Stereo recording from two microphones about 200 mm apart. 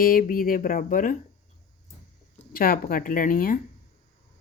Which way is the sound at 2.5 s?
45° left (ahead or behind).